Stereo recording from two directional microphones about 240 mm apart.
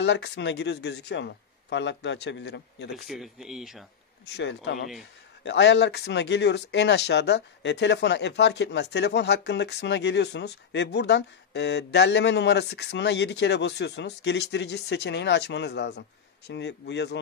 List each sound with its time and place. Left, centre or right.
0.0 s speech: left
2.9 s speech: centre
4.3 s speech: left